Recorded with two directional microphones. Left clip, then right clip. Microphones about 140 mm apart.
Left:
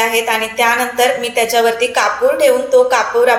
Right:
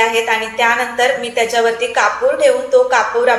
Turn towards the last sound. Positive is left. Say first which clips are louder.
# left 1 dB
turn(degrees=20)  # may be behind; listen again after turning